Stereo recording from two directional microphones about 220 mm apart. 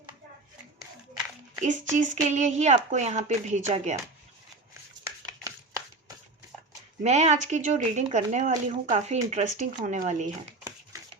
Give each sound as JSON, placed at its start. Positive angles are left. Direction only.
{"t": 1.6, "sound": "speech", "side_deg": -35}
{"t": 5.0, "sound": "chopping", "side_deg": -15}
{"t": 7.0, "sound": "speech", "side_deg": -30}